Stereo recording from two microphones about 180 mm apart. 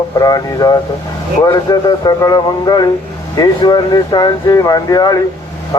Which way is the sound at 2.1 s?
20° left (ahead or behind).